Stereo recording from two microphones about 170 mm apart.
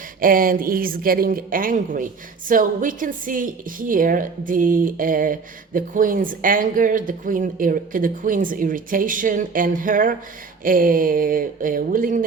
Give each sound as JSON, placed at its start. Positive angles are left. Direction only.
{"t": 0.2, "sound": "a woman's voice", "side_deg": -55}